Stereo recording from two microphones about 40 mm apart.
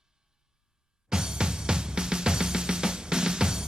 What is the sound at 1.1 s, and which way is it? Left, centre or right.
Music, centre.